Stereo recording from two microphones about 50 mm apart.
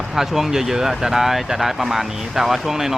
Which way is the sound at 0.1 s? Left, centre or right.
Centre.